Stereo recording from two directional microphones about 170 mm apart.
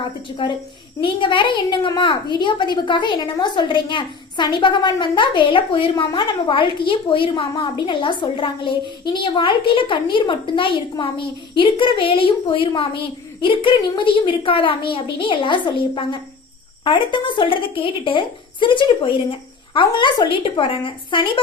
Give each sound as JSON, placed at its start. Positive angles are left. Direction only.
{"t": 0.0, "sound": "a woman's voice", "side_deg": 30}